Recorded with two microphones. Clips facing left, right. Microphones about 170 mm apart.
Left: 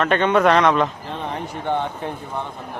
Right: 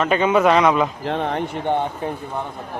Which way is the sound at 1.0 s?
70° right (ahead or behind).